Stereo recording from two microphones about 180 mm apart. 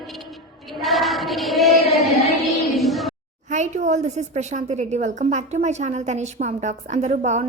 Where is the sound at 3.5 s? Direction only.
40° right (ahead or behind).